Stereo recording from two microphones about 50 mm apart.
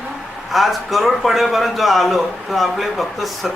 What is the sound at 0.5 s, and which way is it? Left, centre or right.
Speech, centre.